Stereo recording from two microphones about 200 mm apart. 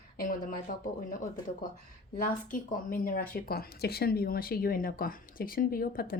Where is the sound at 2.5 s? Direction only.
45° left (ahead or behind).